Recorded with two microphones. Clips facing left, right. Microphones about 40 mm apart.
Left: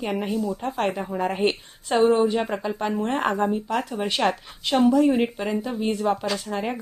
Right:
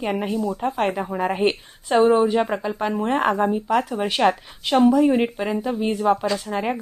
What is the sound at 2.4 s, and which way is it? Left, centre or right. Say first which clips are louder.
Speech: right 4 dB; centre.